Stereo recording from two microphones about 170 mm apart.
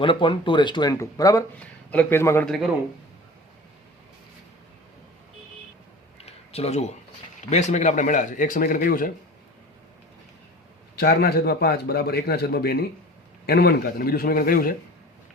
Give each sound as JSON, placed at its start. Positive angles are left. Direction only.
{"t": 0.0, "sound": "speech", "side_deg": 30}
{"t": 1.5, "sound": "a man's voice", "side_deg": 10}
{"t": 2.5, "sound": "a man's voice", "side_deg": 0}
{"t": 6.1, "sound": "a sound", "side_deg": 35}
{"t": 7.5, "sound": "speech", "side_deg": 45}
{"t": 10.9, "sound": "a man's voice", "side_deg": 65}